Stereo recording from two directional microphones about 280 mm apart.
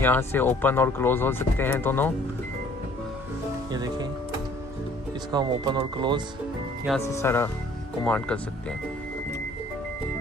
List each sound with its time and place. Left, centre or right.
0.0 s speech: centre
3.7 s music: centre
5.3 s speech: centre
7.0 s speech: centre